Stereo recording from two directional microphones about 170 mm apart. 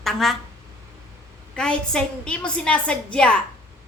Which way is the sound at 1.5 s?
5° left (ahead or behind).